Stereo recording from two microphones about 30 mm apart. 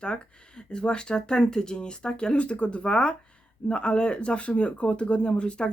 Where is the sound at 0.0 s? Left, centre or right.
Left.